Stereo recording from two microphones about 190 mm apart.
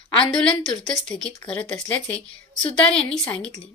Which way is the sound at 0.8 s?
Centre (ahead or behind).